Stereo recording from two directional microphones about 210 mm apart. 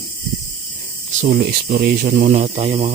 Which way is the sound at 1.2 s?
40° right (ahead or behind).